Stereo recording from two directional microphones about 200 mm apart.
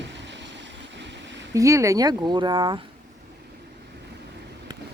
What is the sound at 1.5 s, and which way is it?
Speech, 15° right (ahead or behind).